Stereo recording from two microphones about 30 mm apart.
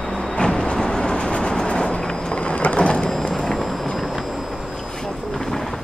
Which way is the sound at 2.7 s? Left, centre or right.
Left.